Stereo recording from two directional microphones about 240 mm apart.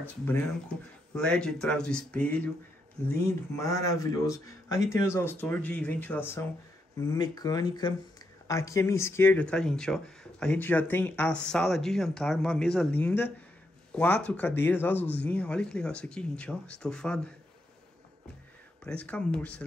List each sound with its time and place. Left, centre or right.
0.2 s speech: centre
3.5 s speech: centre
18.9 s speech: centre